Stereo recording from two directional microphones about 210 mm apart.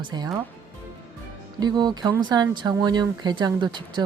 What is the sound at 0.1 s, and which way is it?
Speech, 20° right (ahead or behind).